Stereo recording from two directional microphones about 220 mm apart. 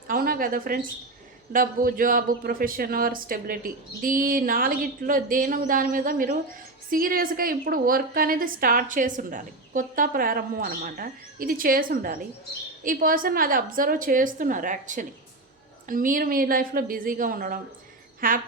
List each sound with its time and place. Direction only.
0.1 s a woman's voice: 40° right (ahead or behind)